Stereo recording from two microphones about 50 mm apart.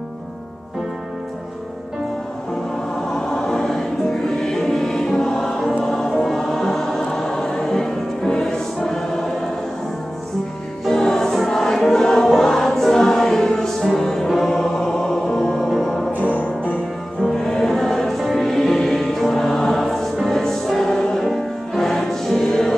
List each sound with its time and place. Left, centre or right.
3.1 s music: centre
5.8 s choir: centre
10.9 s music: centre
11.3 s choir: centre
14.3 s music: centre
17.2 s music: centre